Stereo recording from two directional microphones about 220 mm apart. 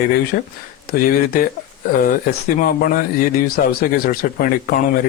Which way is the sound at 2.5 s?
40° left (ahead or behind).